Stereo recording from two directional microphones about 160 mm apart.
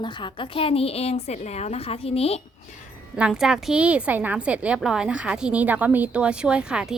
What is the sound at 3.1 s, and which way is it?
A woman's voice, 5° right (ahead or behind).